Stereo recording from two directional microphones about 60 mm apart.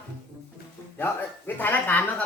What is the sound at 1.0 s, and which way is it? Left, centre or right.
Speech, left.